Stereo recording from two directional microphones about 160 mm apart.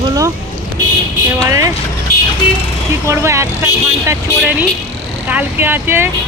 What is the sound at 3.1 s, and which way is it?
Speech, 15° right (ahead or behind).